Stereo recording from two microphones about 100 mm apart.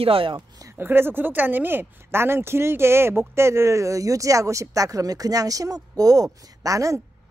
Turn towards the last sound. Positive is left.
turn(degrees=-35)  # may be behind; listen again after turning